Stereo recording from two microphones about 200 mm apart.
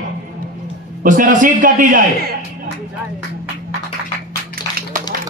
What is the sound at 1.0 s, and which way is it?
A man's voice, 40° right (ahead or behind).